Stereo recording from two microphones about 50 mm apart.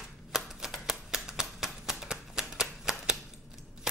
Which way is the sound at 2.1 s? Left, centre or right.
Centre.